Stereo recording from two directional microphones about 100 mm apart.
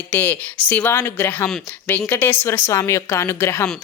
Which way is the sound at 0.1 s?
15° left (ahead or behind).